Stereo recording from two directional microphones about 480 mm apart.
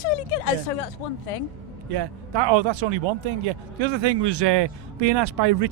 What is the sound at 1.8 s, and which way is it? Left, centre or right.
Speech, right.